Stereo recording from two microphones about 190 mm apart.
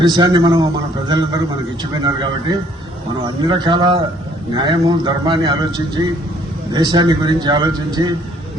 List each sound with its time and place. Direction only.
0.0 s speech: 20° right (ahead or behind)